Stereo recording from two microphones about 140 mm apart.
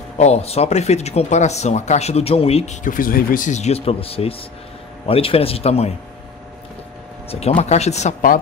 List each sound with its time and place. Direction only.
0.2 s speech: 50° left (ahead or behind)
7.2 s speech: 45° left (ahead or behind)